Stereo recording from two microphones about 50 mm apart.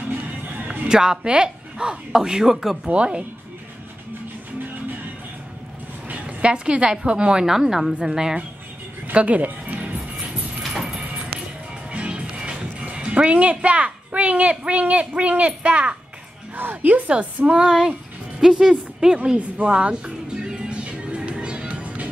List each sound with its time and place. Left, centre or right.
0.7 s a woman's voice: centre
2.8 s a woman's voice: centre
6.0 s a woman's voice: right
9.1 s speech: right
10.6 s a sound: centre
11.9 s music: right
12.8 s a woman's voice: right
16.5 s a woman's voice: right; by 19.1 s centre
19.3 s music: right